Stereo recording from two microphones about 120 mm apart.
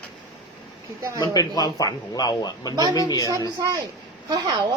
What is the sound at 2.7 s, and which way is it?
Speech, 35° right (ahead or behind).